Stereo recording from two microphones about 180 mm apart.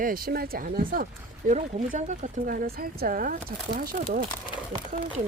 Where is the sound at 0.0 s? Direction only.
55° right (ahead or behind).